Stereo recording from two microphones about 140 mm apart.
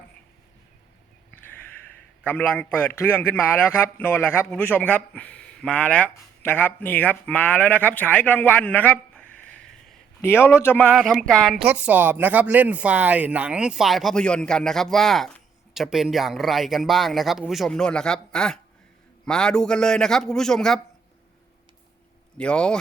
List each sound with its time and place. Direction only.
2.2 s a man's voice: 15° left (ahead or behind)
10.9 s speech: centre (ahead or behind)
11.6 s speech: 10° right (ahead or behind); by 20.8 s 5° left (ahead or behind)
22.4 s a man's voice: 5° left (ahead or behind)